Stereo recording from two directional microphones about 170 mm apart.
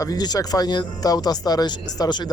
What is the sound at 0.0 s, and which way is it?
Speech, 25° left (ahead or behind).